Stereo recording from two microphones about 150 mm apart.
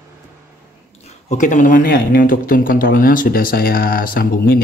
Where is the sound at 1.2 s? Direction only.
50° left (ahead or behind).